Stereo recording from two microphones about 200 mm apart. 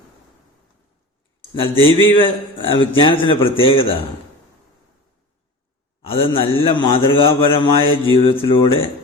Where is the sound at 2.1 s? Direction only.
25° left (ahead or behind).